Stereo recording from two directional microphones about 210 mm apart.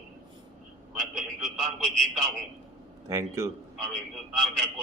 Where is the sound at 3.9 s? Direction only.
Centre (ahead or behind).